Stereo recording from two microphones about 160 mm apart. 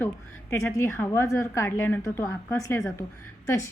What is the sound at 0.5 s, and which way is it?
A woman's voice, 20° left (ahead or behind).